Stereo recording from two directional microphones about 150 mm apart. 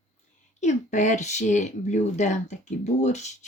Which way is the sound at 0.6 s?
50° left (ahead or behind).